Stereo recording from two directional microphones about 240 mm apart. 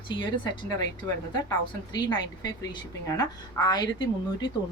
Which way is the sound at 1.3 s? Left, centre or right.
Centre.